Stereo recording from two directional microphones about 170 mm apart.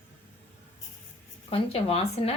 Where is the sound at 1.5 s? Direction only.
35° left (ahead or behind).